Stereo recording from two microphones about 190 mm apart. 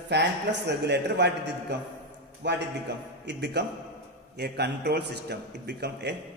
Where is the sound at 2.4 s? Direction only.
65° right (ahead or behind).